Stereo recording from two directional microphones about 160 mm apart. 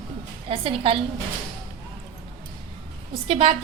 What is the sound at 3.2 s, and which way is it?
Speech, 35° right (ahead or behind).